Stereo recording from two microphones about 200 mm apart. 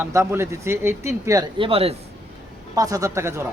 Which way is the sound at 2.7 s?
15° right (ahead or behind).